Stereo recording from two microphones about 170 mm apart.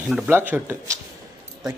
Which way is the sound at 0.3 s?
10° right (ahead or behind).